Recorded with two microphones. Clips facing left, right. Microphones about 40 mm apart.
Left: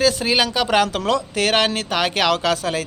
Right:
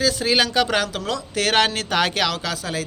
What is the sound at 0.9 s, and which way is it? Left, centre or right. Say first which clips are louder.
Speech: left 6 dB; left.